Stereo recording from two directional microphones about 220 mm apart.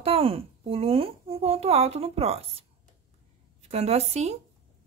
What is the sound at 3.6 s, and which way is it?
Speech, 30° right (ahead or behind).